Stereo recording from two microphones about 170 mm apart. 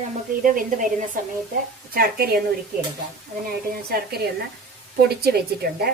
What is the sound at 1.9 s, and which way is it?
Speech, 65° right (ahead or behind).